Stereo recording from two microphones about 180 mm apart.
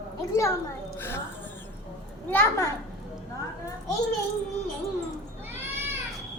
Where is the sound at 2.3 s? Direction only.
10° left (ahead or behind).